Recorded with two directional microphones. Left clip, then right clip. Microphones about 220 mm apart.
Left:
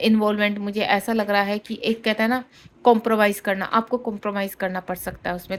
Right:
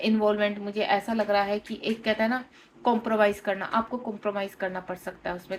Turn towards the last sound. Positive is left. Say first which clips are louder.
# left 5 dB
turn(degrees=55)  # may be behind; listen again after turning